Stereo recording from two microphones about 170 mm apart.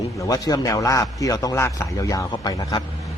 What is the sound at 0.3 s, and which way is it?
A man's voice, 20° left (ahead or behind).